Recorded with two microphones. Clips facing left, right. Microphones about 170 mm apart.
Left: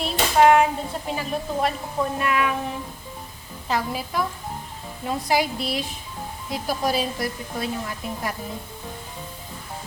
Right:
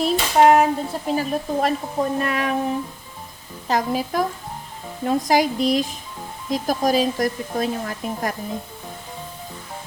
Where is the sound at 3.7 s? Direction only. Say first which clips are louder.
Right 5 dB; 40° right (ahead or behind).